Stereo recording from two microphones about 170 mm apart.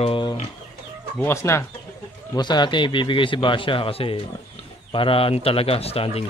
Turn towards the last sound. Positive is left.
turn(degrees=35)  # may be behind; listen again after turning